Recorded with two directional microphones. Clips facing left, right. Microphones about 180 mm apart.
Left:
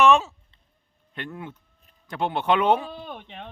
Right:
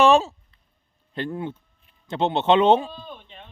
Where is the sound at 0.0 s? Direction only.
35° right (ahead or behind).